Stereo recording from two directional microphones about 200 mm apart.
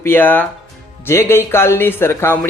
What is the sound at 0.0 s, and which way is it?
Speech, 10° left (ahead or behind).